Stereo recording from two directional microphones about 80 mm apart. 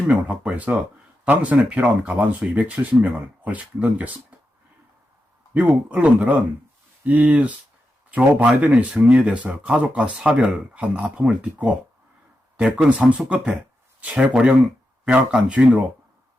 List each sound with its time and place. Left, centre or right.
0.1 s speech: centre
5.5 s speech: centre